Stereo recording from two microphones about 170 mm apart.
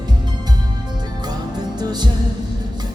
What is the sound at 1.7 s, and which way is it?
Music, 25° right (ahead or behind).